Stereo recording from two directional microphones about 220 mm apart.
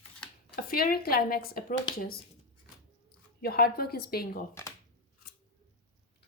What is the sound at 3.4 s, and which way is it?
Speech, 45° left (ahead or behind).